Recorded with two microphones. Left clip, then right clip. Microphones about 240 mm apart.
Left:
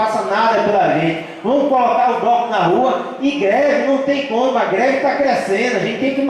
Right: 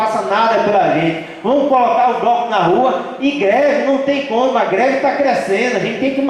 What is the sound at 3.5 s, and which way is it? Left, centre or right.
A man's voice, centre.